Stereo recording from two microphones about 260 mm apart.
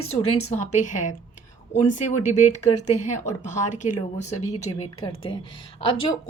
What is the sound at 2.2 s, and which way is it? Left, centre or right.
Speech, left.